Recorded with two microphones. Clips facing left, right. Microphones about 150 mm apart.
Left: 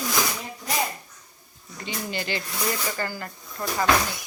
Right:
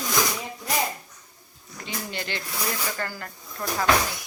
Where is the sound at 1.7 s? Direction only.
Centre (ahead or behind).